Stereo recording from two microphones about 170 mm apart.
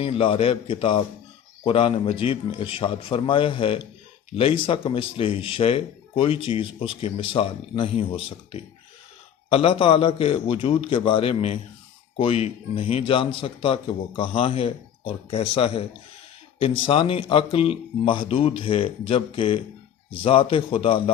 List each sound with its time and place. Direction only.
0.0 s speech: 35° left (ahead or behind)